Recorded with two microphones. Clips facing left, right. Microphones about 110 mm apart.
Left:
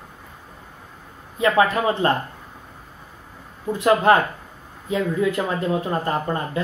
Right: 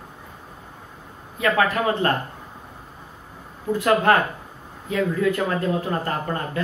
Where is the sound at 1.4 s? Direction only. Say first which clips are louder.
Left 2 dB; 20° left (ahead or behind).